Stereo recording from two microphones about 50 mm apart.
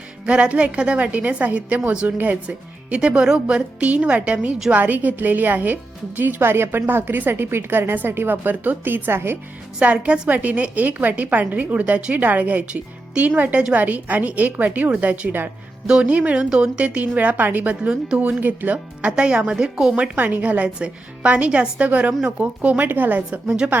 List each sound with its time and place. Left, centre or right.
0.3 s a woman's voice: right
3.0 s a woman's voice: centre
4.7 s a woman's voice: right
6.4 s a woman's voice: right
9.8 s a woman's voice: right
19.1 s a woman's voice: centre
20.1 s a woman's voice: right
22.8 s a woman's voice: right